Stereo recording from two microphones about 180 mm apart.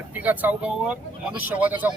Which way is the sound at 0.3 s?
10° right (ahead or behind).